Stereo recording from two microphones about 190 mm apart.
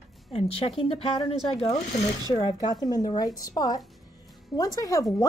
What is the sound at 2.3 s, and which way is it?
A woman's voice, 20° left (ahead or behind).